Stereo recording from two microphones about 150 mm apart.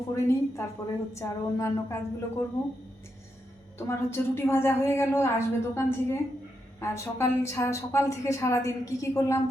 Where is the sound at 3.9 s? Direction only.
15° left (ahead or behind).